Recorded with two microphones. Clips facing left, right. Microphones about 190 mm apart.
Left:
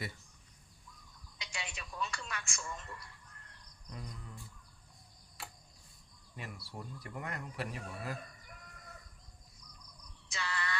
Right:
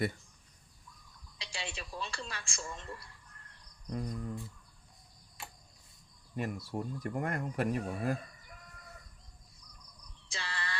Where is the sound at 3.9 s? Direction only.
45° right (ahead or behind).